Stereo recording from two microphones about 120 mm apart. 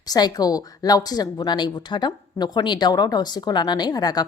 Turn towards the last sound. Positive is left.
turn(degrees=30)  # may be behind; listen again after turning